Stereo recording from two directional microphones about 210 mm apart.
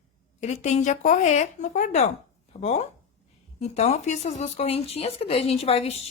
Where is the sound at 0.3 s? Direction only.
35° left (ahead or behind).